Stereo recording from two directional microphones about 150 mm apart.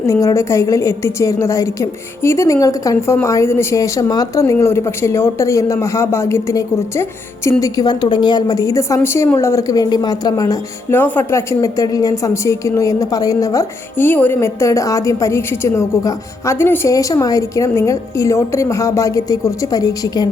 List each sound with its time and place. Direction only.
0.1 s speech: 20° left (ahead or behind)
11.0 s speech: 15° left (ahead or behind)